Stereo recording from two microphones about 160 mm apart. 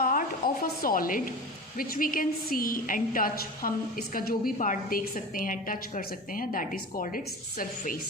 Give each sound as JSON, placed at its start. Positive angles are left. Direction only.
{"t": 0.0, "sound": "a sound", "side_deg": 60}
{"t": 1.8, "sound": "a woman's voice", "side_deg": 60}
{"t": 4.5, "sound": "a woman's voice", "side_deg": 55}